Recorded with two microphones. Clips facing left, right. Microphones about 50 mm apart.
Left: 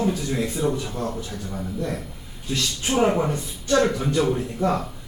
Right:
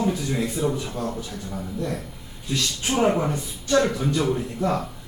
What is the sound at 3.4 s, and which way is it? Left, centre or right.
Speech, left.